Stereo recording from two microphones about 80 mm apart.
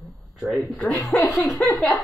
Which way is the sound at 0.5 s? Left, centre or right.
Centre.